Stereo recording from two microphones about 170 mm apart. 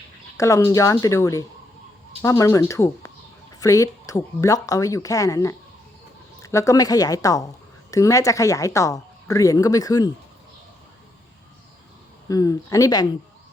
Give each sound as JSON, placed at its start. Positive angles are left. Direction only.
{"t": 0.3, "sound": "a woman's voice", "side_deg": 20}
{"t": 12.3, "sound": "a woman's voice", "side_deg": 20}